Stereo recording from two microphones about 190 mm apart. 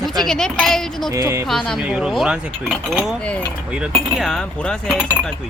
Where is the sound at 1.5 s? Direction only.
5° left (ahead or behind).